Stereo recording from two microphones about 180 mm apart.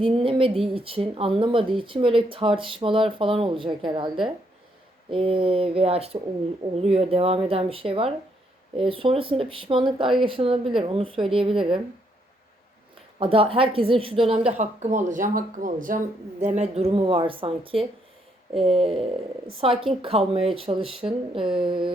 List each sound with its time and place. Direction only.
0.0 s a woman's voice: 30° right (ahead or behind)
13.1 s a woman's voice: 30° right (ahead or behind)
18.7 s speech: centre (ahead or behind)
19.9 s a woman's voice: 30° right (ahead or behind)